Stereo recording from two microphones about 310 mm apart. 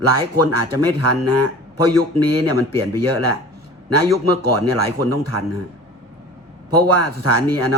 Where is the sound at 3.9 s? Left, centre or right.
Right.